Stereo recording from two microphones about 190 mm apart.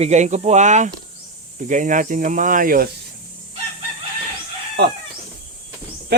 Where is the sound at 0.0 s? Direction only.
40° right (ahead or behind).